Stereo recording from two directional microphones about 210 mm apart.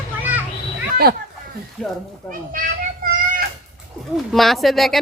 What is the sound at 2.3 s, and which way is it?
Children playing, 40° right (ahead or behind).